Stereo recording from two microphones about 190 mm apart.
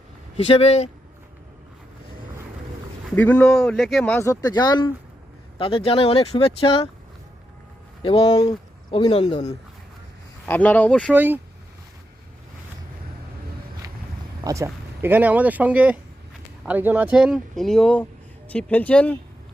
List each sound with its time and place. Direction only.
0.3 s speech: 30° left (ahead or behind)
3.2 s speech: 10° left (ahead or behind); by 6.8 s 30° left (ahead or behind)
8.0 s speech: 30° left (ahead or behind)
10.4 s speech: 10° left (ahead or behind)
11.1 s speech: 10° right (ahead or behind)
14.4 s speech: 15° right (ahead or behind); by 19.1 s 5° left (ahead or behind)